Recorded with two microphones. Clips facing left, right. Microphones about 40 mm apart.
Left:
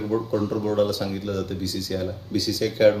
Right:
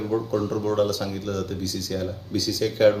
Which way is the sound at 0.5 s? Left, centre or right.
Centre.